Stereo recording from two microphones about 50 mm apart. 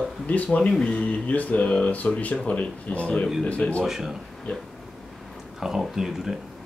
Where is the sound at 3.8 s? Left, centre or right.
Centre.